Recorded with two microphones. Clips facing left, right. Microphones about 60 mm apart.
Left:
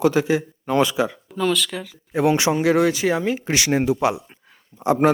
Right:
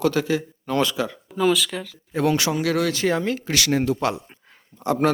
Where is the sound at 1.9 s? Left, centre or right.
Centre.